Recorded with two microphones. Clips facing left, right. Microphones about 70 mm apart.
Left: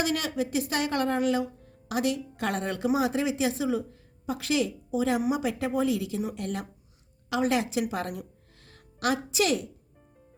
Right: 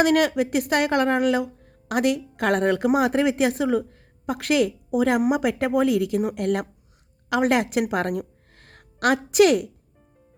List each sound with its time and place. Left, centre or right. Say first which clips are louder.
0.0 s a woman's voice: right 9 dB; right